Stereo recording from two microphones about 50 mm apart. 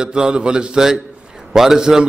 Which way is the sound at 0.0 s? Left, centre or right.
Centre.